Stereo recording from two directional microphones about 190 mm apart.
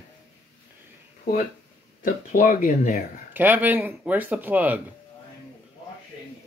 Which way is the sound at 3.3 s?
10° right (ahead or behind).